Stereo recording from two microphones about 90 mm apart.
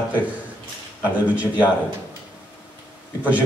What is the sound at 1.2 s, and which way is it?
Speech, 15° right (ahead or behind).